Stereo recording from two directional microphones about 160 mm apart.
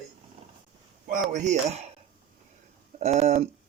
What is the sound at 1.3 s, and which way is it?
Speech, 45° right (ahead or behind).